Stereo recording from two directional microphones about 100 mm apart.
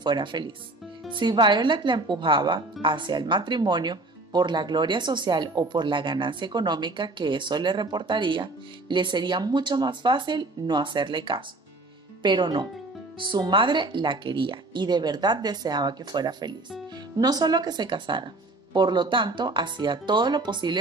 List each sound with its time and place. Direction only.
0.0 s speech: 50° right (ahead or behind)